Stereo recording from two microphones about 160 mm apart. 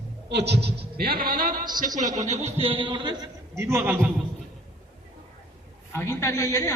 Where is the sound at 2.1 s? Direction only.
45° right (ahead or behind); by 3.2 s 30° right (ahead or behind).